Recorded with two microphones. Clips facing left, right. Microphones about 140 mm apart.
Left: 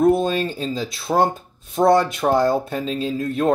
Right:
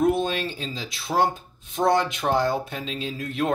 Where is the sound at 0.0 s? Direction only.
40° left (ahead or behind).